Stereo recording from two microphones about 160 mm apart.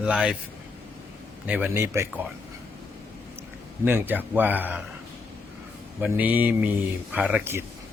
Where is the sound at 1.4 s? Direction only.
10° right (ahead or behind).